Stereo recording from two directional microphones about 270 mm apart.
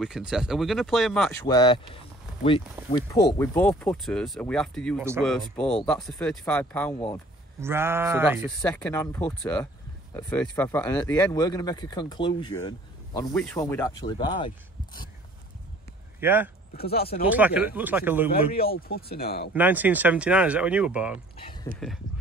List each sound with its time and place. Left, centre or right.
0.0 s speech: centre
1.4 s speech: centre
6.9 s speech: left
7.6 s speech: centre
8.6 s speech: centre
13.3 s speech: centre
16.2 s speech: centre
16.7 s speech: left
17.3 s speech: centre
18.6 s speech: left
19.5 s speech: centre